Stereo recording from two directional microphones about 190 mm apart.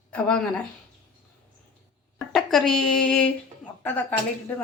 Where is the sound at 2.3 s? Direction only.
Centre (ahead or behind).